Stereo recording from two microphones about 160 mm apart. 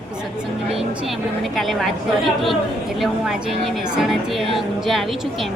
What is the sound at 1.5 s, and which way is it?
A woman's voice, centre (ahead or behind).